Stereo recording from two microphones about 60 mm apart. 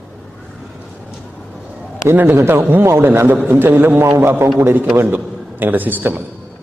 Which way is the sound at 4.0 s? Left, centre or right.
Right.